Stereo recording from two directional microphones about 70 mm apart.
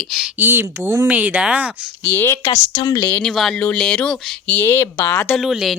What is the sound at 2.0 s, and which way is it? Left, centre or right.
Speech, left.